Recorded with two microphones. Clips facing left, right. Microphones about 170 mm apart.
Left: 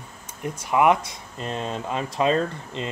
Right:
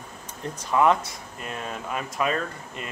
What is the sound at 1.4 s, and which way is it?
Speech, 25° left (ahead or behind).